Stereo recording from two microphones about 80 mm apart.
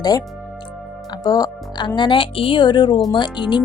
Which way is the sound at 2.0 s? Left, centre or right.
Left.